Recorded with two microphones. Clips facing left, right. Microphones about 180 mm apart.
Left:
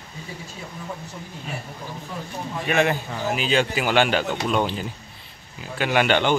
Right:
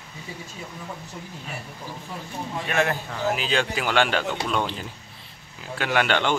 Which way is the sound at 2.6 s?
Centre (ahead or behind).